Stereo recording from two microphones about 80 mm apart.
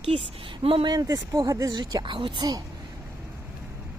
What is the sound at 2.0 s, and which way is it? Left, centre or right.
Speech, right.